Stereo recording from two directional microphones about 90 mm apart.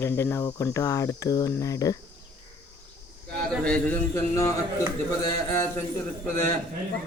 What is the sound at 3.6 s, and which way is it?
Speech, 10° left (ahead or behind).